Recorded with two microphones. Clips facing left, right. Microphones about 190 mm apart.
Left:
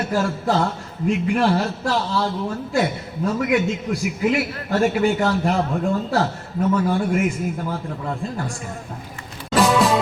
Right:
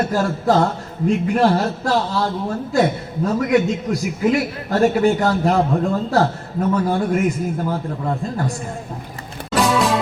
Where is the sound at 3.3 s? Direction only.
40° right (ahead or behind).